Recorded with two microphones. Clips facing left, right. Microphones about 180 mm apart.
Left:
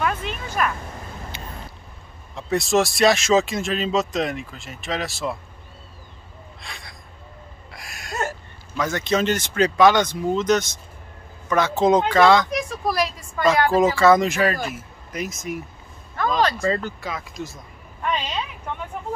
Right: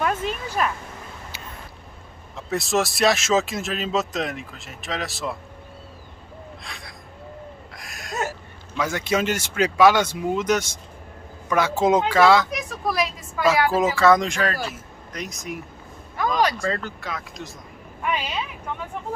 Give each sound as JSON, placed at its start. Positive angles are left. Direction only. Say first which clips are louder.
{"t": 0.0, "sound": "a sound", "louder": "right 1 dB", "side_deg": -40}
{"t": 1.3, "sound": "vehicle", "louder": "left 3 dB", "side_deg": -5}
{"t": 2.3, "sound": "speech", "louder": "left 3 dB", "side_deg": 0}
{"t": 6.6, "sound": "gasp", "louder": "right 1 dB", "side_deg": 0}
{"t": 7.7, "sound": "a sound", "louder": "left 1 dB", "side_deg": 0}
{"t": 8.7, "sound": "speech", "louder": "left 1 dB", "side_deg": -10}
{"t": 16.3, "sound": "speech", "louder": "even", "side_deg": -10}
{"t": 16.6, "sound": "speech", "louder": "left 3 dB", "side_deg": 5}